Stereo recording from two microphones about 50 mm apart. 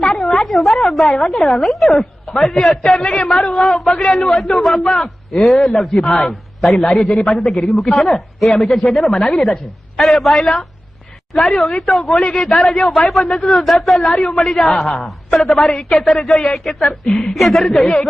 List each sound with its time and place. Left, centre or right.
0.1 s a sound: centre
0.4 s a woman's voice: centre
2.8 s a man's voice: centre
3.5 s a woman's voice: centre
3.8 s a man's voice: centre
6.7 s a man's voice: left
7.0 s a man's voice: centre
10.2 s a man's voice: centre
12.2 s a man's voice: centre
12.5 s a woman's voice: centre
15.5 s a man's voice: centre
17.7 s a man's voice: centre